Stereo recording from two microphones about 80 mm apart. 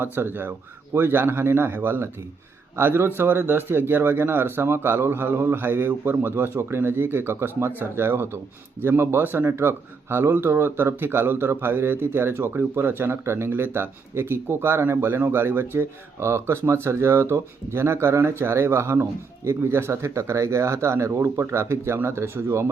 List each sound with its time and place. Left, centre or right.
0.0 s speech: right